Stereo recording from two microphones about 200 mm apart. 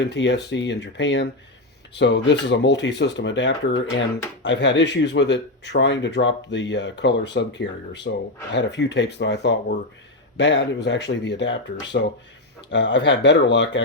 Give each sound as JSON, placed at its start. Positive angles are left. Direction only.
{"t": 0.0, "sound": "speech", "side_deg": 60}